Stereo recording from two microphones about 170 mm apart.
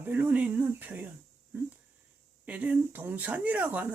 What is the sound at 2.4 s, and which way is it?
Speech, 10° right (ahead or behind).